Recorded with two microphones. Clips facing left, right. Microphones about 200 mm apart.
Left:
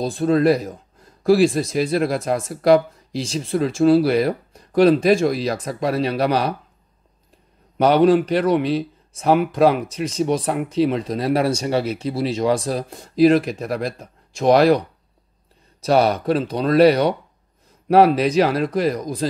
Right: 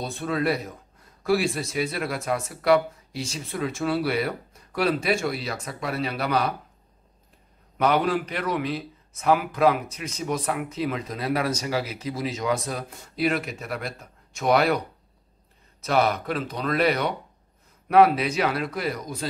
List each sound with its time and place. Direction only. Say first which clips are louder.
0.0 s speech: left 9 dB; 35° left (ahead or behind)
7.7 s speech: left 8 dB; 30° left (ahead or behind)
15.8 s speech: left 6 dB; 30° left (ahead or behind)